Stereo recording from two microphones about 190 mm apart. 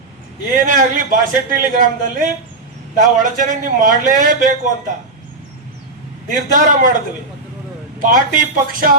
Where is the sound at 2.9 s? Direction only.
45° right (ahead or behind).